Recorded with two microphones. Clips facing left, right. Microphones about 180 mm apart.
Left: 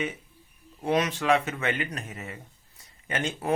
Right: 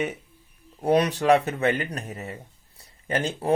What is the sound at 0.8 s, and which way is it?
Speech, 35° right (ahead or behind).